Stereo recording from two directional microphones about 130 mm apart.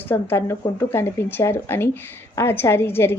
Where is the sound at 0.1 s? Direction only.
15° left (ahead or behind).